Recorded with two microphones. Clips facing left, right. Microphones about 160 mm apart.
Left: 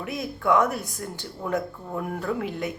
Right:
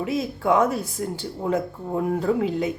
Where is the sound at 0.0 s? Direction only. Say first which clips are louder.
Right 4 dB; 25° right (ahead or behind).